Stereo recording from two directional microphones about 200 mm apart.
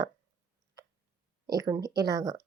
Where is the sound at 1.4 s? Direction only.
20° right (ahead or behind).